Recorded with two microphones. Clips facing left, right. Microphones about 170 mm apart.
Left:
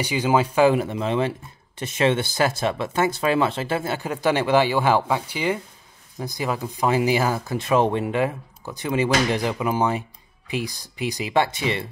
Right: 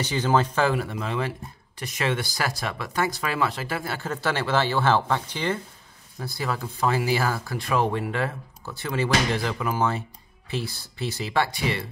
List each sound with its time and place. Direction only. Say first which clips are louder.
0.0 s speech: left 2 dB; 10° left (ahead or behind)